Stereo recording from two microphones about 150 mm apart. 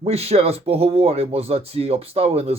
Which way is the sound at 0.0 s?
45° right (ahead or behind).